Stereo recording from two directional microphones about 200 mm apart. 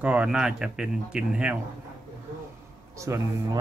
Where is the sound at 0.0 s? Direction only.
5° right (ahead or behind).